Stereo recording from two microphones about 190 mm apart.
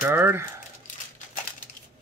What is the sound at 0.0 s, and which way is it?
Speech, 10° right (ahead or behind).